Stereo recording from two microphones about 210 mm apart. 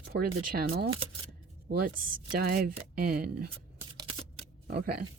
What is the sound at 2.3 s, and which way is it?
Speech, 45° right (ahead or behind).